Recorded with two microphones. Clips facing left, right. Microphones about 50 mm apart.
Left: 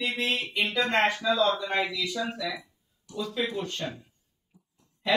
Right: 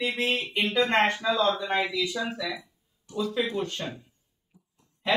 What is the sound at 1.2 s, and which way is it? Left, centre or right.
Speech, right.